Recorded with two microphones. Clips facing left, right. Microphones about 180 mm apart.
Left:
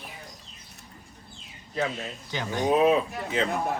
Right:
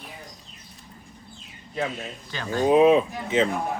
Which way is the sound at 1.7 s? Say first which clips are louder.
Even; centre (ahead or behind).